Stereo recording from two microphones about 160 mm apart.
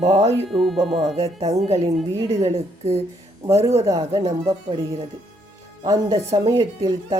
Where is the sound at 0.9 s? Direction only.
25° right (ahead or behind).